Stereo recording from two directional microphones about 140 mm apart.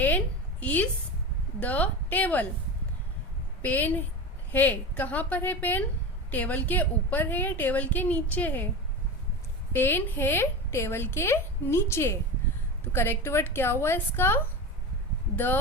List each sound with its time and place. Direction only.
0.6 s a woman's voice: 10° left (ahead or behind)
3.6 s a woman's voice: 15° left (ahead or behind)
9.7 s a woman's voice: 15° left (ahead or behind)